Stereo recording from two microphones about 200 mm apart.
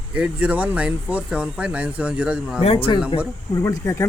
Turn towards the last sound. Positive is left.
turn(degrees=15)  # may be behind; listen again after turning